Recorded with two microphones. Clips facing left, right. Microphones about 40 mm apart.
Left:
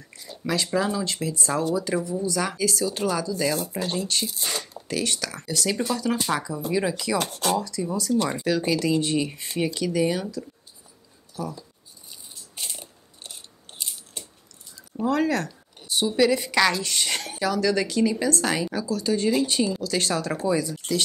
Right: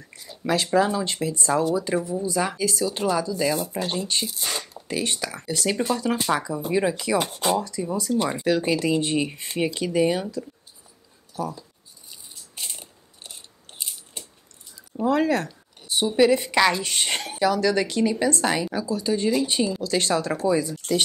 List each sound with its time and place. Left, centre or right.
0.1 s speech: centre
1.0 s speech: right
11.4 s a woman's voice: right
12.1 s biting: centre
15.0 s a woman's voice: right